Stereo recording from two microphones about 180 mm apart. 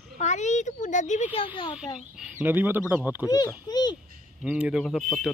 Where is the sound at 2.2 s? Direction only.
10° right (ahead or behind).